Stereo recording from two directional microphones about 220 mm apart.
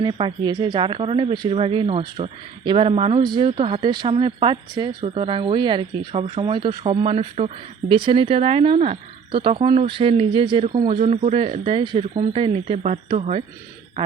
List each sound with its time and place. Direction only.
0.0 s speech: 20° right (ahead or behind)